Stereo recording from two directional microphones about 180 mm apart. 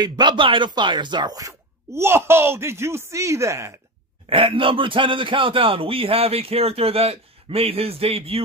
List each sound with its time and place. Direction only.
0.0 s speech: 25° right (ahead or behind)
4.3 s a man's voice: 30° right (ahead or behind)